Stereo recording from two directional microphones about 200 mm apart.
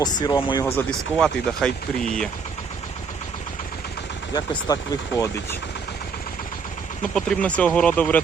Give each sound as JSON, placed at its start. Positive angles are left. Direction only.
{"t": 0.2, "sound": "speech", "side_deg": 20}
{"t": 0.8, "sound": "speech", "side_deg": 5}
{"t": 4.4, "sound": "speech", "side_deg": 15}
{"t": 7.1, "sound": "speech", "side_deg": 5}